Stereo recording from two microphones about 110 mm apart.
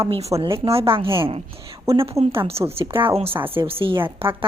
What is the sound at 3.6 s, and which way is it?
Speech, 55° right (ahead or behind).